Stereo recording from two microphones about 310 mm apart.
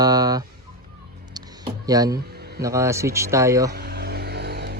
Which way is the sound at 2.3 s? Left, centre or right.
Right.